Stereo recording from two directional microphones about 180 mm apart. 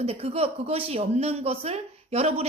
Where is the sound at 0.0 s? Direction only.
35° right (ahead or behind).